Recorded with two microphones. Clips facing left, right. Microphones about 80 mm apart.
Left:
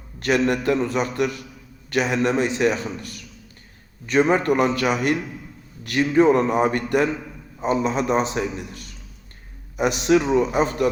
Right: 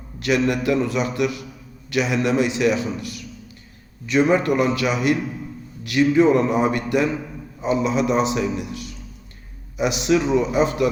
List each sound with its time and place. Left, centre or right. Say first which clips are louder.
0.2 s a man's voice: even; left
4.3 s a man's voice: even; left